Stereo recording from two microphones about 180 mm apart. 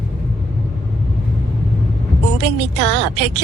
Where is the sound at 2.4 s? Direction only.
75° right (ahead or behind).